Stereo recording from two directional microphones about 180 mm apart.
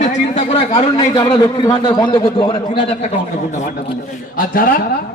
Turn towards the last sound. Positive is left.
turn(degrees=55)  # may be behind; listen again after turning